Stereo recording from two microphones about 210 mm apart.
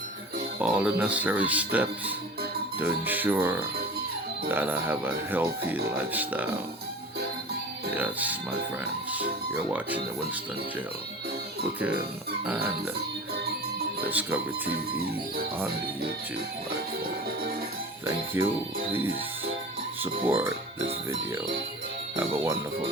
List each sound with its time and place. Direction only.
0.6 s speech: 5° right (ahead or behind)
7.9 s speech: 10° right (ahead or behind)
14.1 s speech: 10° right (ahead or behind)
18.4 s speech: 15° right (ahead or behind)
22.1 s speech: 25° right (ahead or behind)